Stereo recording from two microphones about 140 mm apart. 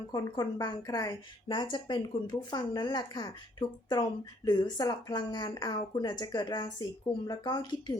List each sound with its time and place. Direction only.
0.1 s a woman's voice: 30° left (ahead or behind)